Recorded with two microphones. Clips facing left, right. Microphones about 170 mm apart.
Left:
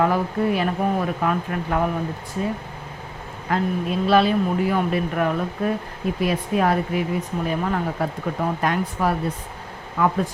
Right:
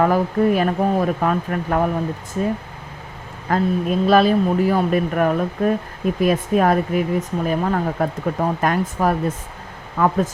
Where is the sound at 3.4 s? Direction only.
45° right (ahead or behind).